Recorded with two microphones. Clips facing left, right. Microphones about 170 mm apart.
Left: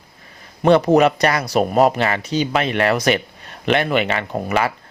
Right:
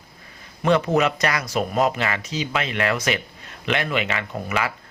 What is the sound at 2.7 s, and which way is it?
Speech, 40° left (ahead or behind).